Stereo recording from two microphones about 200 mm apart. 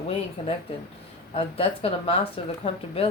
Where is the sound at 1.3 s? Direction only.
30° left (ahead or behind).